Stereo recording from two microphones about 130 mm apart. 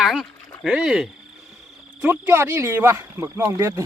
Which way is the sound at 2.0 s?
15° right (ahead or behind).